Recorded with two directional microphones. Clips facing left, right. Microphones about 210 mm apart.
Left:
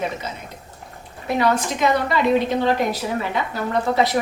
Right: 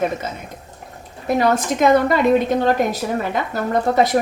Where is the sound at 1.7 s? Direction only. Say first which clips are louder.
Right 5 dB; 50° right (ahead or behind).